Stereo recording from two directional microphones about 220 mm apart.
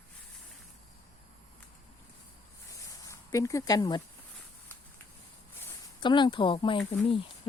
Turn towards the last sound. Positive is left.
turn(degrees=20)  # may be behind; listen again after turning